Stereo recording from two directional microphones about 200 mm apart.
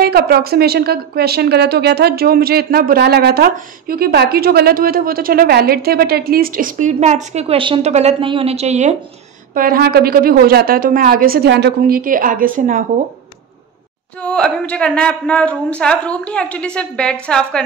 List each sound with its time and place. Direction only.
0.0 s a woman's voice: 50° right (ahead or behind); by 8.9 s 35° right (ahead or behind)
9.5 s a woman's voice: 45° right (ahead or behind)
14.2 s speech: 5° left (ahead or behind)